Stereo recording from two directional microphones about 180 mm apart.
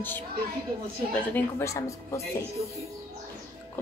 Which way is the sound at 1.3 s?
15° left (ahead or behind).